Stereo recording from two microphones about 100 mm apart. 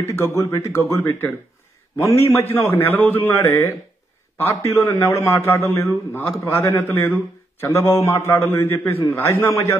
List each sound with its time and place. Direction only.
0.1 s a man's voice: 30° left (ahead or behind)